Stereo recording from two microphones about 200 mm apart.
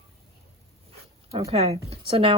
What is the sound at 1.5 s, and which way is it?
Speech, 30° right (ahead or behind).